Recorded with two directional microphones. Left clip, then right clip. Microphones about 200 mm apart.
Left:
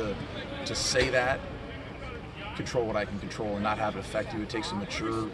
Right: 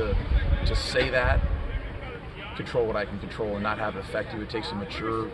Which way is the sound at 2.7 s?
5° left (ahead or behind).